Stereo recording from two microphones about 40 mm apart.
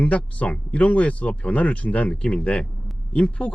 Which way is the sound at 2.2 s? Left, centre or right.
Left.